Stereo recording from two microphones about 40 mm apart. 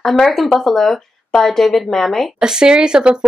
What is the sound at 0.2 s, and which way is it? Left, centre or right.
Speech, centre.